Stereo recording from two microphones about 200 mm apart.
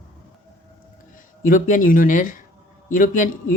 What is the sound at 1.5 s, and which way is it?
Speech, 40° left (ahead or behind).